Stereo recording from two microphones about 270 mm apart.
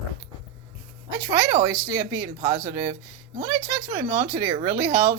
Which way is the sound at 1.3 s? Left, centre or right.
Centre.